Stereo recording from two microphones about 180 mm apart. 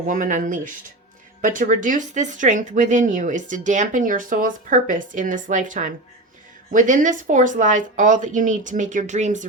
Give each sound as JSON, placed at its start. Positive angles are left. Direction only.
{"t": 0.1, "sound": "speech", "side_deg": -45}